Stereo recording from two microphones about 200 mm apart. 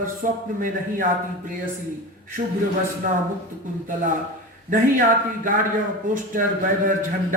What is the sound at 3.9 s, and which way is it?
Speech, 40° right (ahead or behind).